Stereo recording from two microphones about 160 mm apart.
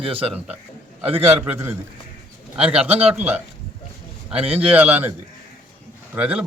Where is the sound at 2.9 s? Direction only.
40° right (ahead or behind).